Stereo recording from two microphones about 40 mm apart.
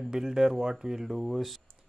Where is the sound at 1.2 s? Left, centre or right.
Centre.